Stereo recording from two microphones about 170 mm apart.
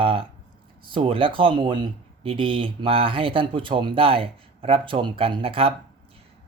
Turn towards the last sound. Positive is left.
turn(degrees=-35)  # may be behind; listen again after turning